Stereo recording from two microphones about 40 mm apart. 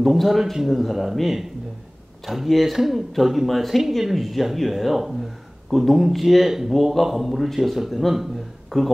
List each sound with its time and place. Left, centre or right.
0.0 s speech: centre